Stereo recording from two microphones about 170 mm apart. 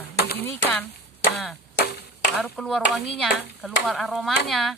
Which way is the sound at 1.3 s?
Centre (ahead or behind).